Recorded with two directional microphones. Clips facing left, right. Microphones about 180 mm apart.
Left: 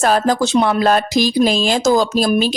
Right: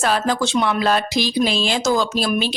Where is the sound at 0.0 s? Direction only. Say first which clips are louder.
Left 4 dB; 40° left (ahead or behind).